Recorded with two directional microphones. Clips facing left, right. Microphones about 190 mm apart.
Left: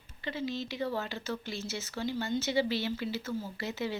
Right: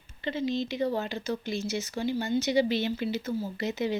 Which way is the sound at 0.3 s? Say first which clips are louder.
Right 6 dB; 20° right (ahead or behind).